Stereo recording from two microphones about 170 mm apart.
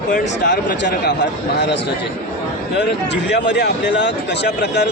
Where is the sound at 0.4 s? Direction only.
90° left.